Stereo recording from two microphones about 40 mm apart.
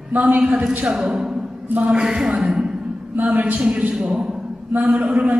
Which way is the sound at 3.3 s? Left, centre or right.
Right.